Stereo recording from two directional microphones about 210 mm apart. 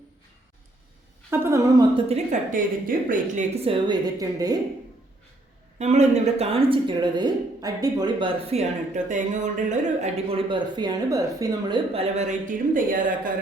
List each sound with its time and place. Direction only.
1.3 s a woman's voice: 15° right (ahead or behind)
5.8 s a woman's voice: 35° right (ahead or behind); by 11.8 s 15° right (ahead or behind)
11.9 s speech: 35° right (ahead or behind)